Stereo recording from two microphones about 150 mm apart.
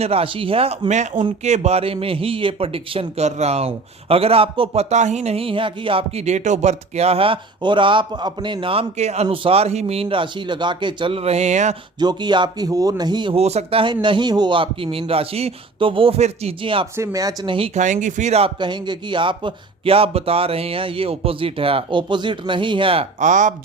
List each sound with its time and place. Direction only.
0.0 s a man's voice: 40° right (ahead or behind)
9.2 s a man's voice: 35° right (ahead or behind)
11.9 s speech: 30° right (ahead or behind)
13.4 s a man's voice: 45° right (ahead or behind)
17.0 s speech: 20° right (ahead or behind)
17.7 s a man's voice: 55° right (ahead or behind); by 23.0 s 35° right (ahead or behind)
23.2 s speech: 55° right (ahead or behind)